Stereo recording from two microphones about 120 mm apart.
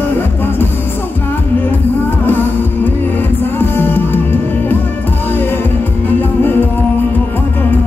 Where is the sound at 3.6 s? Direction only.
15° left (ahead or behind).